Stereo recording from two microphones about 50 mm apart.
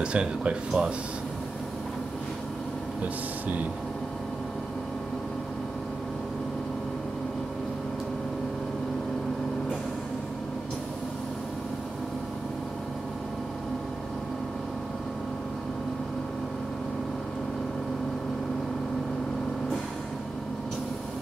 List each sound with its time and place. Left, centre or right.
0.0 s speech: right